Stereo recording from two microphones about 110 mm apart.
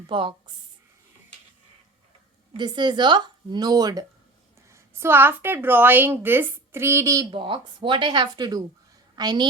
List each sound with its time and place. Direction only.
0.1 s a woman's voice: 50° right (ahead or behind)
2.6 s a woman's voice: 40° right (ahead or behind)
4.7 s a woman's voice: 25° right (ahead or behind)
7.3 s a woman's voice: 50° right (ahead or behind)